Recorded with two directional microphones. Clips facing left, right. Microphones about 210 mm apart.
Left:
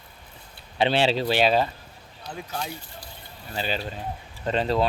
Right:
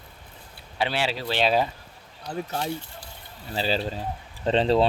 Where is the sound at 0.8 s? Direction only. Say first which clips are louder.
Left 5 dB; 25° left (ahead or behind).